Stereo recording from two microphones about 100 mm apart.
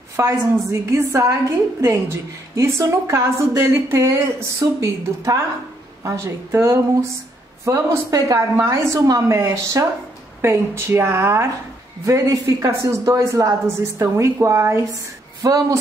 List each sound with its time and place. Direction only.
0.1 s a woman's voice: 30° right (ahead or behind)